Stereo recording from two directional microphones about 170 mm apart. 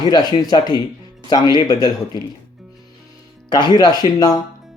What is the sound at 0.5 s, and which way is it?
Speech, 25° left (ahead or behind).